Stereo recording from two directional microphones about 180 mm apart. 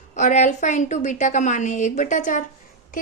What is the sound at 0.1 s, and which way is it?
A woman's voice, 45° left (ahead or behind).